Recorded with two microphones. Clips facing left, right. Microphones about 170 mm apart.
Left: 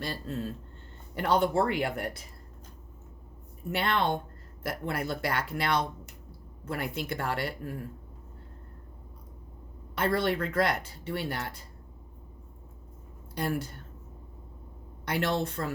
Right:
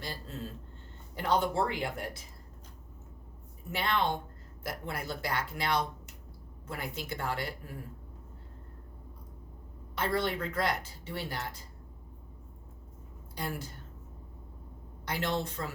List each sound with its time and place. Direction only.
0.0 s a woman's voice: 60° left (ahead or behind)
3.7 s a woman's voice: 60° left (ahead or behind)
9.9 s a woman's voice: 60° left (ahead or behind)
13.3 s a woman's voice: 60° left (ahead or behind)
15.0 s a woman's voice: 60° left (ahead or behind)